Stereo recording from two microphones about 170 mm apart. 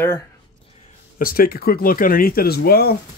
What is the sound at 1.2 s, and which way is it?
Speech, 60° left (ahead or behind).